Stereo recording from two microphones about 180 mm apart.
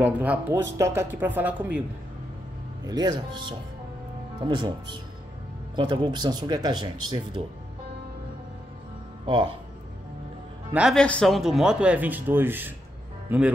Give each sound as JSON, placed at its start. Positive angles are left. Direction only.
{"t": 0.0, "sound": "speech", "side_deg": -10}
{"t": 2.8, "sound": "speech", "side_deg": -20}
{"t": 9.2, "sound": "speech", "side_deg": -25}
{"t": 10.7, "sound": "speech", "side_deg": -5}